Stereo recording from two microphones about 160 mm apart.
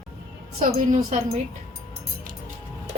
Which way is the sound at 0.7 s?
60° right (ahead or behind).